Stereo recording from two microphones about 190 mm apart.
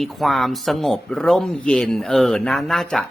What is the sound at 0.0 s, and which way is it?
Speech, centre (ahead or behind).